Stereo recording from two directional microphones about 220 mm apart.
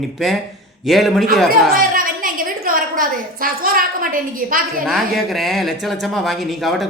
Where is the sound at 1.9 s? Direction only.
40° right (ahead or behind).